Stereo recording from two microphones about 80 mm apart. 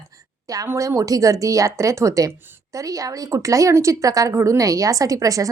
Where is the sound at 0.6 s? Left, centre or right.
Right.